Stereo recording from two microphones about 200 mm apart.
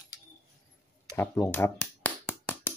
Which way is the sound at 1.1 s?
10° left (ahead or behind).